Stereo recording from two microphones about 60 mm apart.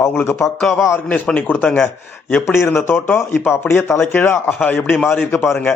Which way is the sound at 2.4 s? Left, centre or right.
Left.